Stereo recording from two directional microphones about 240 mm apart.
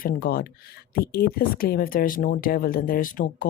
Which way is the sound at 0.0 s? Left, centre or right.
Left.